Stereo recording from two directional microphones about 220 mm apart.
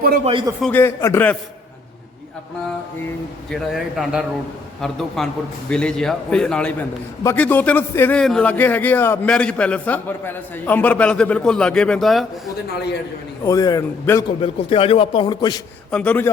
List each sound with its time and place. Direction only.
0.3 s a man's voice: 20° right (ahead or behind)
0.6 s a man's voice: 10° left (ahead or behind)
3.5 s a man's voice: centre (ahead or behind)
13.4 s a man's voice: 15° left (ahead or behind)
14.4 s a man's voice: 25° left (ahead or behind)
15.9 s a man's voice: 5° left (ahead or behind)